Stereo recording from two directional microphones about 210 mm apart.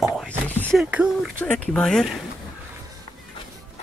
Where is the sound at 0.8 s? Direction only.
5° right (ahead or behind).